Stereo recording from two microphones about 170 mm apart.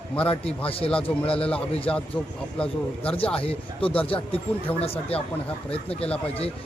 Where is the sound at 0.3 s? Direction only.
35° left (ahead or behind).